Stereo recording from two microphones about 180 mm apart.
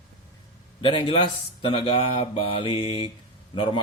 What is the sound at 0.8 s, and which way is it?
Speech, 25° left (ahead or behind).